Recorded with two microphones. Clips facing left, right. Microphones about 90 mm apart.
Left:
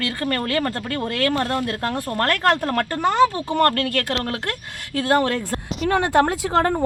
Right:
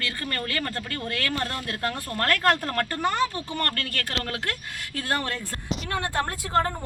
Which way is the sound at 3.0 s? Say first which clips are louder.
Left 10 dB; 90° left.